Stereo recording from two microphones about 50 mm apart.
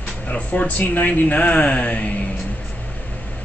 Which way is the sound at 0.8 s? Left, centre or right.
Left.